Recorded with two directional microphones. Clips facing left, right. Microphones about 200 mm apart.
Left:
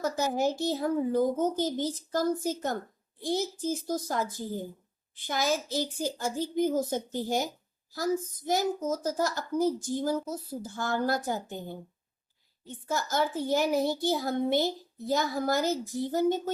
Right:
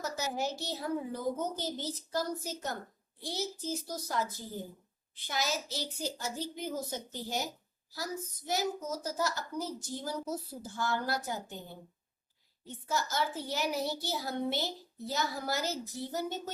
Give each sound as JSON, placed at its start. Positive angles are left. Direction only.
{"t": 0.0, "sound": "a child's voice", "side_deg": 50}
{"t": 12.9, "sound": "a child's voice", "side_deg": 50}